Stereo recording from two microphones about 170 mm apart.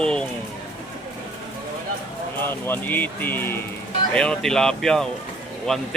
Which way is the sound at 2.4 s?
10° left (ahead or behind).